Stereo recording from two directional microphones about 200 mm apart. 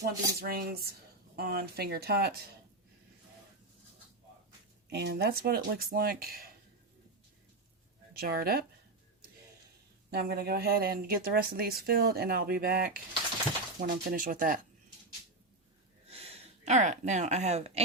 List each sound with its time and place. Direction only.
0.0 s speech: 50° right (ahead or behind)
4.9 s speech: 55° right (ahead or behind)
8.2 s speech: 50° right (ahead or behind)
10.1 s speech: 50° right (ahead or behind)
16.0 s speech: 30° right (ahead or behind)